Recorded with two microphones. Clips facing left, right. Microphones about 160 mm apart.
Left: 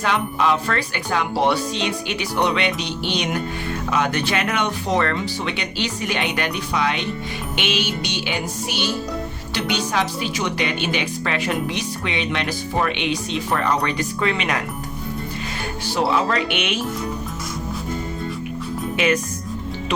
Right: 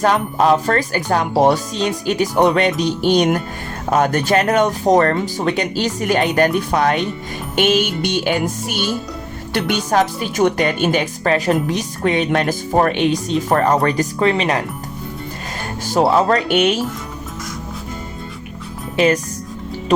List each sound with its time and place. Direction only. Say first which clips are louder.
0.0 s speech: right 5 dB; 40° right (ahead or behind)
15.9 s speech: right 6 dB; 45° right (ahead or behind)
18.9 s speech: right 5 dB; 35° right (ahead or behind)